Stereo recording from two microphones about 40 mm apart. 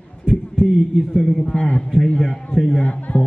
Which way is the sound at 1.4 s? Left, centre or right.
Left.